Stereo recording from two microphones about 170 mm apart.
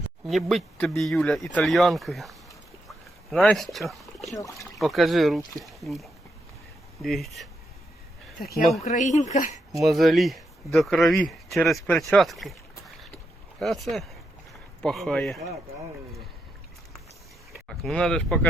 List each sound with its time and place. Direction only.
0.3 s speech: centre (ahead or behind)
4.4 s speech: 20° left (ahead or behind)
4.6 s speech: centre (ahead or behind)
8.8 s speech: 45° left (ahead or behind)
9.8 s speech: centre (ahead or behind)
13.6 s speech: centre (ahead or behind)
17.5 s speech: 5° left (ahead or behind)